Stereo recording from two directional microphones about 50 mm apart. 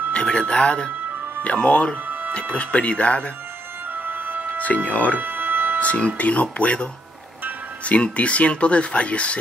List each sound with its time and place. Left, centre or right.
0.1 s music: left
1.4 s speech: left
3.9 s music: right
4.8 s speech: left
5.2 s music: right
5.8 s speech: left